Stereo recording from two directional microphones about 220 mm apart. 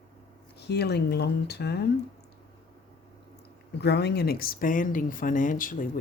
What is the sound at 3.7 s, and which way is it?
Speech, 50° left (ahead or behind).